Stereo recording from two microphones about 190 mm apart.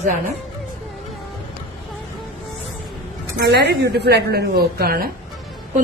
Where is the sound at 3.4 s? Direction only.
60° right (ahead or behind).